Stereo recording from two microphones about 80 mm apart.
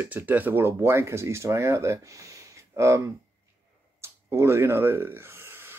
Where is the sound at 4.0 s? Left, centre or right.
Right.